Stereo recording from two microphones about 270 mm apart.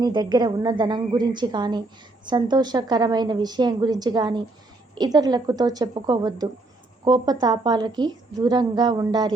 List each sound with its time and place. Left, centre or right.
0.0 s a woman's voice: centre